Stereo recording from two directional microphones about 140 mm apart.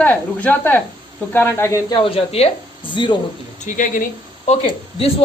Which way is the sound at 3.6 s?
70° left (ahead or behind).